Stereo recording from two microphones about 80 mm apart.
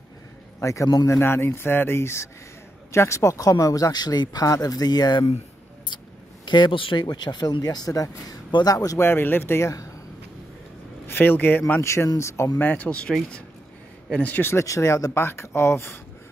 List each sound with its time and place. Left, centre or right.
0.6 s a man's voice: left
6.4 s speech: left
9.0 s speech: left
11.1 s speech: left
11.8 s speech: left
12.5 s speech: left
14.1 s speech: centre
14.4 s speech: left
15.1 s speech: left